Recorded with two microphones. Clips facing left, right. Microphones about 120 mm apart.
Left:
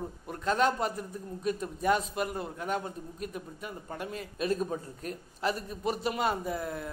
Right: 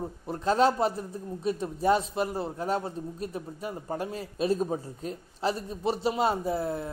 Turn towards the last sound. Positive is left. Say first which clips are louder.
# right 5 dB
turn(degrees=-30)  # may be behind; listen again after turning